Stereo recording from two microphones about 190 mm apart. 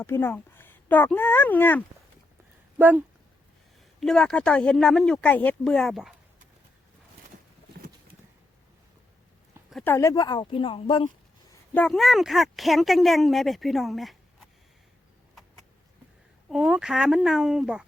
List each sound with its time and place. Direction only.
0.0 s speech: 10° left (ahead or behind)
2.7 s speech: 10° right (ahead or behind)
4.0 s speech: 5° left (ahead or behind)
9.6 s a sound: centre (ahead or behind)
9.9 s speech: 15° left (ahead or behind)
11.7 s speech: 5° left (ahead or behind)
16.5 s speech: 5° right (ahead or behind)